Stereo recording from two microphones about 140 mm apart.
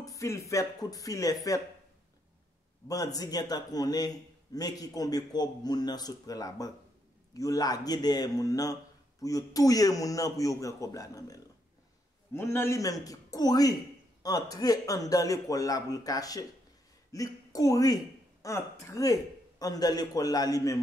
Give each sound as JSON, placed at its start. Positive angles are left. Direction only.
{"t": 0.0, "sound": "a man's voice", "side_deg": 20}
{"t": 2.9, "sound": "a man's voice", "side_deg": 25}